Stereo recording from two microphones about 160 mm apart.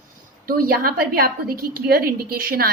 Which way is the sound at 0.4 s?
65° right (ahead or behind).